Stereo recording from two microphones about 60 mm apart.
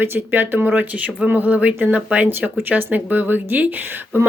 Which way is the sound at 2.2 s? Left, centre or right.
Right.